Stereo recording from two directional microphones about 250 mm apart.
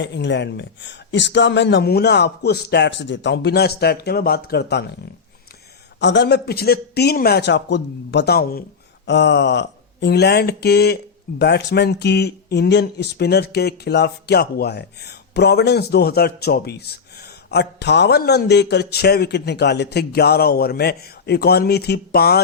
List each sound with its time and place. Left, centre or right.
0.0 s speech: left
6.0 s speech: left